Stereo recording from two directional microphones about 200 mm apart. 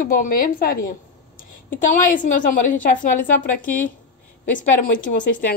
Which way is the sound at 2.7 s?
40° left (ahead or behind).